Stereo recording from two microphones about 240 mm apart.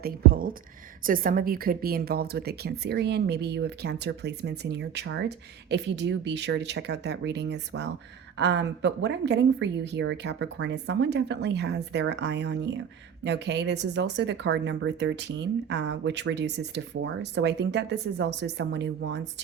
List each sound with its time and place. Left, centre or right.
0.0 s speech: right